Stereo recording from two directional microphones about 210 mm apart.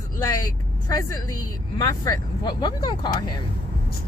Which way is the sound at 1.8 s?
15° left (ahead or behind).